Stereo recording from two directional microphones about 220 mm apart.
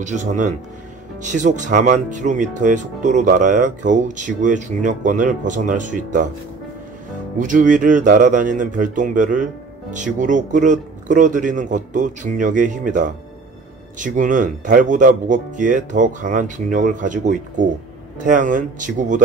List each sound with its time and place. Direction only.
0.0 s speech: 35° right (ahead or behind)
7.3 s speech: 35° right (ahead or behind)